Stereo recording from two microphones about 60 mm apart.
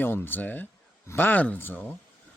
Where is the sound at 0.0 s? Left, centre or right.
Left.